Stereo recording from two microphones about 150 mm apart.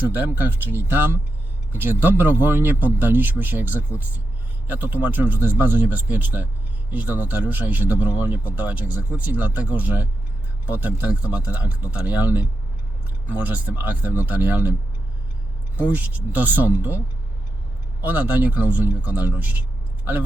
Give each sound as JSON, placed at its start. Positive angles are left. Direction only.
{"t": 0.1, "sound": "speech", "side_deg": -10}
{"t": 15.8, "sound": "speech", "side_deg": -10}
{"t": 18.0, "sound": "speech", "side_deg": -10}